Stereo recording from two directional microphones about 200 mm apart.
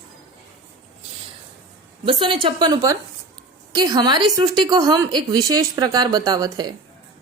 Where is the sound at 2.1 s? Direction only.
25° right (ahead or behind).